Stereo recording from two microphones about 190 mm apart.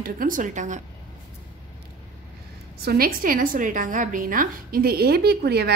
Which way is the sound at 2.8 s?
55° right (ahead or behind).